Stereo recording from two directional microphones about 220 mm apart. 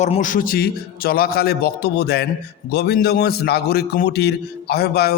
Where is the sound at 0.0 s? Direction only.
35° left (ahead or behind).